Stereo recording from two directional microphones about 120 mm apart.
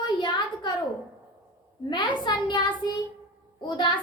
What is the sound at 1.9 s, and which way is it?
A child's voice, 40° left (ahead or behind).